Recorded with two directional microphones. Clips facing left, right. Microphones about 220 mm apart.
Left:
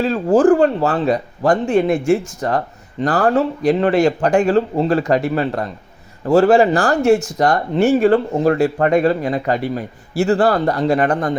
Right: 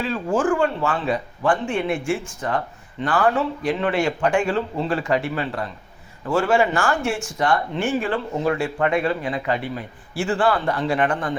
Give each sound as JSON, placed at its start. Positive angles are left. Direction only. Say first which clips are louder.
{"t": 0.0, "sound": "speech", "louder": "left 8 dB", "side_deg": 40}